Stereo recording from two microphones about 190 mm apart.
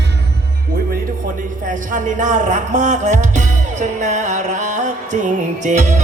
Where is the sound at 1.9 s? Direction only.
40° right (ahead or behind).